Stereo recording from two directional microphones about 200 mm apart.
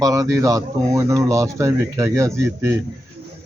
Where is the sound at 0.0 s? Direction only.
15° right (ahead or behind).